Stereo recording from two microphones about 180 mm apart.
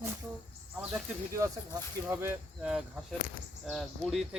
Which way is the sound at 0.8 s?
10° right (ahead or behind).